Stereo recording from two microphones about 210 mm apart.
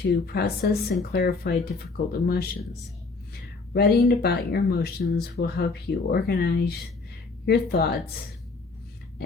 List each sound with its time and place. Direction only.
0.0 s speech: 50° left (ahead or behind)
3.7 s speech: 50° left (ahead or behind)